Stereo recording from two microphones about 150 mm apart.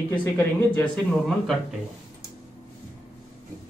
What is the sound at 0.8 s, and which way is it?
Speech, 5° left (ahead or behind).